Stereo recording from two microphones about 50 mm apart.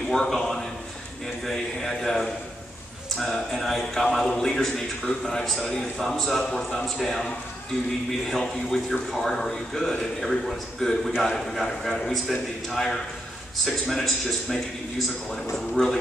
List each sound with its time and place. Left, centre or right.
0.1 s a man's voice: centre
8.6 s a man's voice: centre
15.8 s speech: left